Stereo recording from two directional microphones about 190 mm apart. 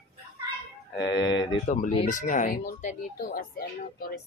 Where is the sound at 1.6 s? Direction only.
40° left (ahead or behind).